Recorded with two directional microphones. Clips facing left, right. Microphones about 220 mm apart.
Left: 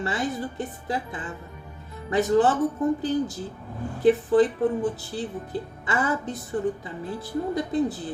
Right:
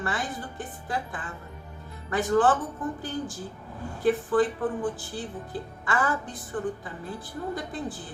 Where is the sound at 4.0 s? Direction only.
20° left (ahead or behind).